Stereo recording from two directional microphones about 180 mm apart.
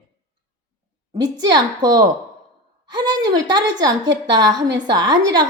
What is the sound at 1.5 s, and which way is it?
A woman's voice, 20° right (ahead or behind).